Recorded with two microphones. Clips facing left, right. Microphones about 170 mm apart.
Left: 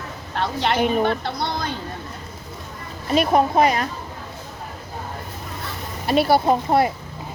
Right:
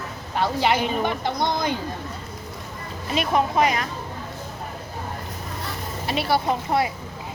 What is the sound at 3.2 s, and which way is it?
Speech, 35° left (ahead or behind).